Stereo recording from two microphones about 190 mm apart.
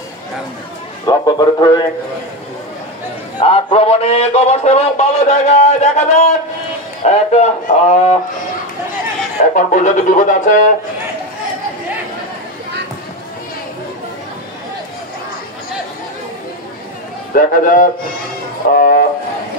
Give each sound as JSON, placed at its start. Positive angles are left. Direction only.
{"t": 1.0, "sound": "speech", "side_deg": 20}
{"t": 3.3, "sound": "speech", "side_deg": 30}
{"t": 9.6, "sound": "speech", "side_deg": 40}
{"t": 17.3, "sound": "a man's voice", "side_deg": 45}
{"t": 18.8, "sound": "music", "side_deg": 50}